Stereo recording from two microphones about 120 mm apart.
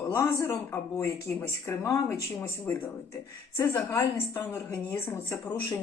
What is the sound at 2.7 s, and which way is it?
Speech, 15° left (ahead or behind).